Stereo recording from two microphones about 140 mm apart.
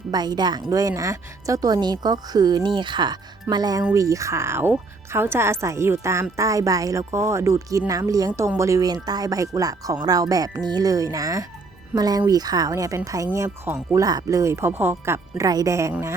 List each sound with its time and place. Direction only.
0.1 s speech: 30° right (ahead or behind)